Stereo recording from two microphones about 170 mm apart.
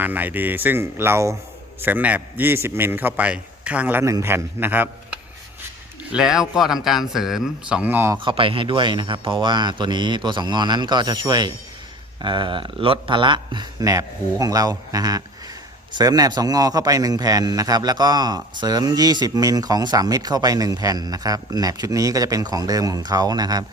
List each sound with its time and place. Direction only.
0.0 s a man's voice: 10° right (ahead or behind)
8.2 s a man's voice: 30° right (ahead or behind)